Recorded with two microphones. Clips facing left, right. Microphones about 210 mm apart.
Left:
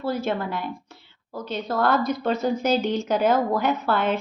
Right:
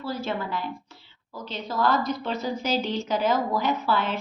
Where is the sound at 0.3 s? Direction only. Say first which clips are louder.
Left 3 dB; 55° left (ahead or behind).